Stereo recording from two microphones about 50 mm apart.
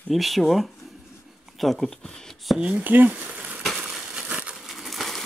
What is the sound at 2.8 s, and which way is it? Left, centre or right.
Speech, right.